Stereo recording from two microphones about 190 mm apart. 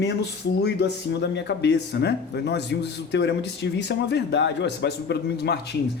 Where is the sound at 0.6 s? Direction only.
65° left (ahead or behind).